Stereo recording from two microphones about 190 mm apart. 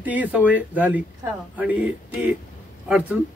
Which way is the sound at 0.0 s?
10° right (ahead or behind).